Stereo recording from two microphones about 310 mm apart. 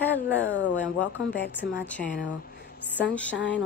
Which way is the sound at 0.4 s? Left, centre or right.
Left.